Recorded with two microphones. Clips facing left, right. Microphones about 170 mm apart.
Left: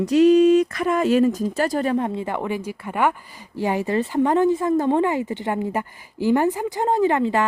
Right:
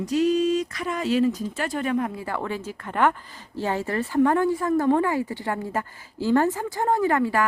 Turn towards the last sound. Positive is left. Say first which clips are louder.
# left 3 dB
turn(degrees=20)  # may be behind; listen again after turning